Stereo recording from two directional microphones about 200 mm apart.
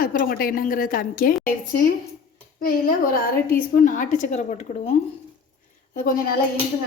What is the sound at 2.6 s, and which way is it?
A woman's voice, 45° left (ahead or behind).